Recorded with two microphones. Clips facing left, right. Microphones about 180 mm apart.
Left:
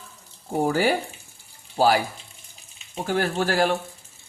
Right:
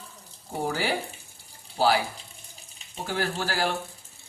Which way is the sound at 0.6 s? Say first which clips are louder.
Left 6 dB; 50° left (ahead or behind).